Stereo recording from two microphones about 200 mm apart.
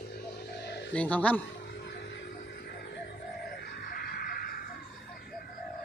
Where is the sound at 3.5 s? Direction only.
50° left (ahead or behind).